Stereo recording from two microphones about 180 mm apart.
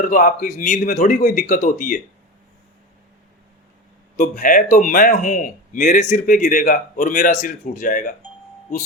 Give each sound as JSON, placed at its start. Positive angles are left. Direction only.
{"t": 0.0, "sound": "speech", "side_deg": 50}
{"t": 4.2, "sound": "speech", "side_deg": 50}